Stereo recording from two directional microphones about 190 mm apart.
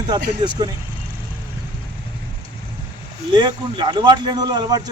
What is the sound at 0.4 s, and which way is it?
Speech, 20° right (ahead or behind).